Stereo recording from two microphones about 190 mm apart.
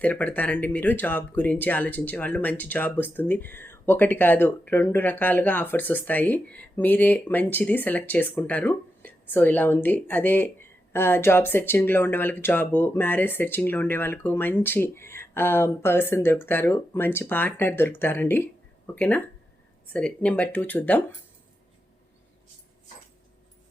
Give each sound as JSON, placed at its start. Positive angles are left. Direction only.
{"t": 0.0, "sound": "speech", "side_deg": 10}